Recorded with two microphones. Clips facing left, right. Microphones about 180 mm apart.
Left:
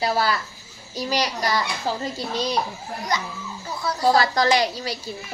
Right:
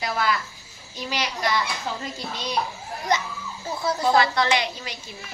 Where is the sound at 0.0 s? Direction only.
35° left (ahead or behind).